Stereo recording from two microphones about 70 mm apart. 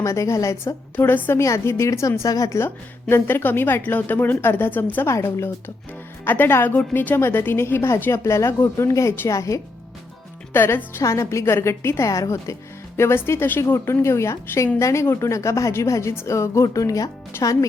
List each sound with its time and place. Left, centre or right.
0.0 s speech: left
1.0 s speech: left
2.6 s a woman's voice: left
5.0 s a woman's voice: left
10.5 s a woman's voice: left
13.0 s a woman's voice: left